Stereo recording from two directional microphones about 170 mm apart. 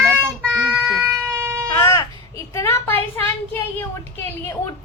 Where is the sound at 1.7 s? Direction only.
15° left (ahead or behind).